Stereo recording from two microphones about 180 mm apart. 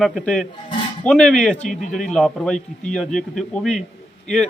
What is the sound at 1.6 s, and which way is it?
Speech, 45° left (ahead or behind).